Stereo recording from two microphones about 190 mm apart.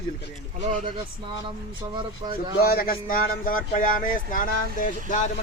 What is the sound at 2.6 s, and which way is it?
Speech, 50° left (ahead or behind).